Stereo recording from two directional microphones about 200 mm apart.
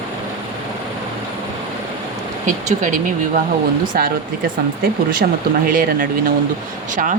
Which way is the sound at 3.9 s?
50° right (ahead or behind).